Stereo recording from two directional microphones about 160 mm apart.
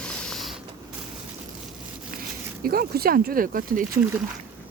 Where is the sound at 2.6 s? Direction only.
70° right (ahead or behind).